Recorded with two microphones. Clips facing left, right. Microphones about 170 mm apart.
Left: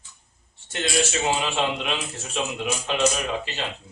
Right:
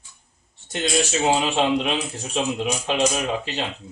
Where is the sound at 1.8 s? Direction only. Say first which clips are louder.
Right 4 dB; 35° right (ahead or behind).